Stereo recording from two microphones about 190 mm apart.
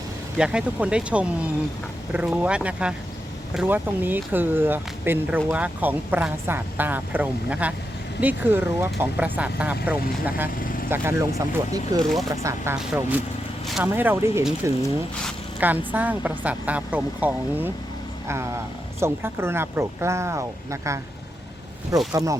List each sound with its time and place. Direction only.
0.3 s speech: 5° right (ahead or behind)
10.6 s vehicle: 45° left (ahead or behind)
10.8 s speech: 10° right (ahead or behind)
15.9 s speech: 10° right (ahead or behind)
18.9 s speech: 15° right (ahead or behind)
22.1 s speech: 15° right (ahead or behind)